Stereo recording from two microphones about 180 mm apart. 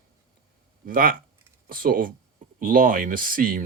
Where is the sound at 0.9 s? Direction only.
55° right (ahead or behind).